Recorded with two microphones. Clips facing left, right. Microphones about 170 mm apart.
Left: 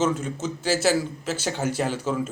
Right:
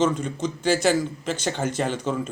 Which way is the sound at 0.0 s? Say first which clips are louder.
Right 2 dB; 5° left (ahead or behind).